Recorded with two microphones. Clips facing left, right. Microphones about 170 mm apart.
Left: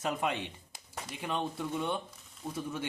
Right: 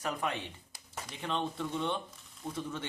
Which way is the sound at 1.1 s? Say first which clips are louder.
Even; 10° left (ahead or behind).